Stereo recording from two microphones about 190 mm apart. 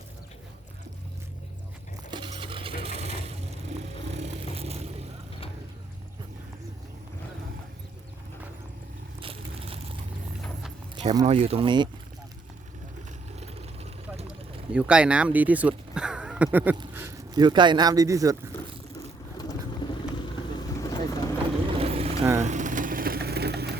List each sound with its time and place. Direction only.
2.0 s coin: 25° right (ahead or behind)
2.8 s mechanisms: 35° right (ahead or behind)
4.5 s vehicle: 30° right (ahead or behind)
9.2 s biting: 30° right (ahead or behind)
11.3 s speech: 30° right (ahead or behind)
14.7 s speech: 5° right (ahead or behind)
16.0 s a sound: 5° right (ahead or behind)
17.4 s speech: 25° right (ahead or behind)
18.9 s vehicle: 20° left (ahead or behind)
21.8 s vehicle: 30° right (ahead or behind); by 23.7 s 60° right (ahead or behind)